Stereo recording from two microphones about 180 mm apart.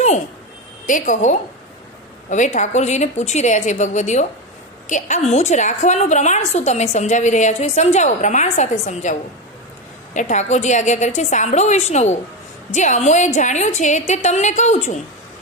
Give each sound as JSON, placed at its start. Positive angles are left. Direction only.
{"t": 0.9, "sound": "a woman's voice", "side_deg": 45}
{"t": 10.2, "sound": "a woman's voice", "side_deg": 40}